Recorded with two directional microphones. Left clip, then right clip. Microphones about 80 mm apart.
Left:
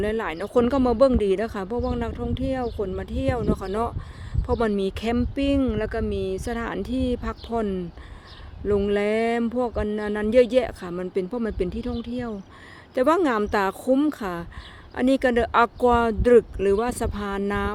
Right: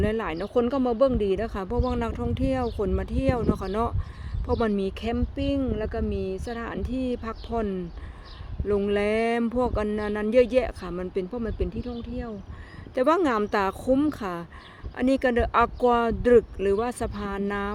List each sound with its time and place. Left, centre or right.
0.0 s speech: left
0.5 s speech: left
1.6 s speech: centre; by 5.1 s left
5.1 s speech: left; by 9.5 s centre
9.5 s speech: centre
11.3 s speech: left
12.9 s speech: left